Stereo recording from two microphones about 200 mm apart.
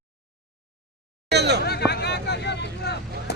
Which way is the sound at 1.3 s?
55° right (ahead or behind).